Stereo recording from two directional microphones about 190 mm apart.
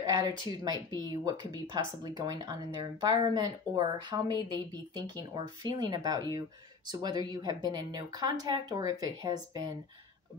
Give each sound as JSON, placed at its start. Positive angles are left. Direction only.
{"t": 0.0, "sound": "speech", "side_deg": -20}